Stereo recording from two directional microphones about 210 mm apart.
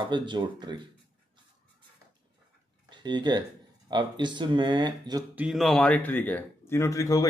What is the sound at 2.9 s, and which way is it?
Speech, 20° right (ahead or behind).